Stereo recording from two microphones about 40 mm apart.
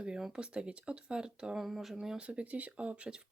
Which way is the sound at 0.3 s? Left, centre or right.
Right.